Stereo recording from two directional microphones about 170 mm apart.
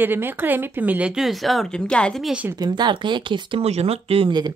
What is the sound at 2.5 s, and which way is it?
Speech, 25° right (ahead or behind).